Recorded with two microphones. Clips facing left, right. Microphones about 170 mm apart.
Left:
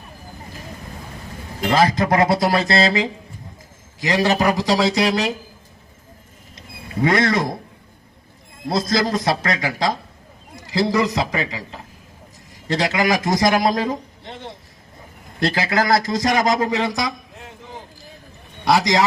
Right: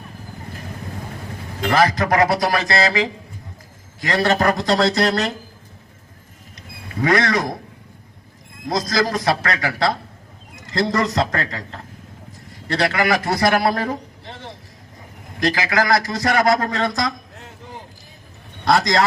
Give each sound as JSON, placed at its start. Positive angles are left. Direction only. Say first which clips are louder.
{"t": 1.6, "sound": "a man's voice", "louder": "even", "side_deg": 25}
{"t": 4.0, "sound": "a man's voice", "louder": "even", "side_deg": 15}
{"t": 6.6, "sound": "a sound", "louder": "left 2 dB", "side_deg": 25}
{"t": 8.7, "sound": "a man's voice", "louder": "left 1 dB", "side_deg": 25}
{"t": 18.6, "sound": "a man's voice", "louder": "even", "side_deg": 15}